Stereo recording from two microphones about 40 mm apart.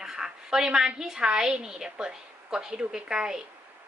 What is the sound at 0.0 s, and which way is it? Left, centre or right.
A woman's voice, centre.